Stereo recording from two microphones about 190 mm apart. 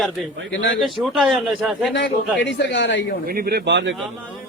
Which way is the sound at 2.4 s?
70° left (ahead or behind).